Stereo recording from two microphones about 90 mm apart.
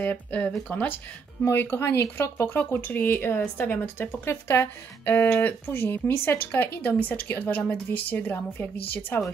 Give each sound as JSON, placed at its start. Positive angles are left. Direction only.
{"t": 0.0, "sound": "speech", "side_deg": 20}